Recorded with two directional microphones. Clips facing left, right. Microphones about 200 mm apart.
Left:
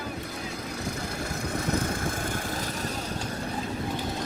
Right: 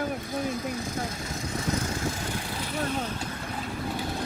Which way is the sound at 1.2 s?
60° left (ahead or behind).